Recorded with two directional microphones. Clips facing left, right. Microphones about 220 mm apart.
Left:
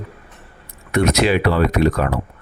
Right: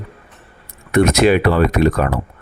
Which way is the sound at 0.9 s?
50° right (ahead or behind).